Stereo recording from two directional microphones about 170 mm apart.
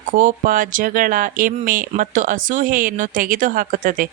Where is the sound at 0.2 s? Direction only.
50° right (ahead or behind).